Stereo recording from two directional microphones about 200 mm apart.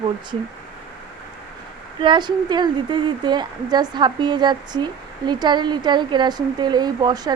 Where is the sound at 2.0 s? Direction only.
25° right (ahead or behind).